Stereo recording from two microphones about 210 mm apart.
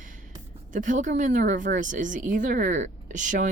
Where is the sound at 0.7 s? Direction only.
40° right (ahead or behind).